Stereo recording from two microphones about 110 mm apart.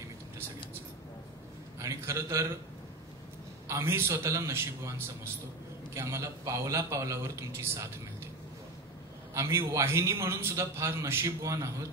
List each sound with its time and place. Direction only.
1.8 s a man's voice: 25° right (ahead or behind)
3.6 s a man's voice: 25° right (ahead or behind)
9.3 s a man's voice: 25° right (ahead or behind)